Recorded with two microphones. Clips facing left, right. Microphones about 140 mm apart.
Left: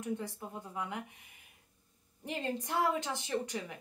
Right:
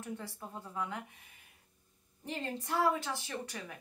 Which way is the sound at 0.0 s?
15° left (ahead or behind).